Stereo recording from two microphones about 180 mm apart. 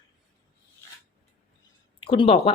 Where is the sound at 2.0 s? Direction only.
30° left (ahead or behind).